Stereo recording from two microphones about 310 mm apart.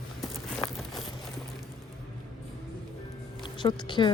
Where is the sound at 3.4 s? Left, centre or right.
Centre.